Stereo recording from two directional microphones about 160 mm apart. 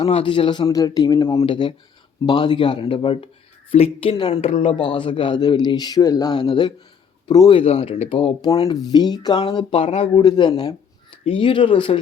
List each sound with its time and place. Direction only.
0.0 s a man's voice: 35° left (ahead or behind)